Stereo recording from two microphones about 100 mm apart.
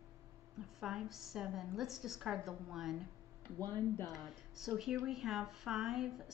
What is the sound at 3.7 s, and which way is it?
Speech, 25° left (ahead or behind).